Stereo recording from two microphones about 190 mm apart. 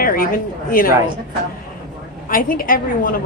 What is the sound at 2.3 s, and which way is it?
Speech, 45° left (ahead or behind).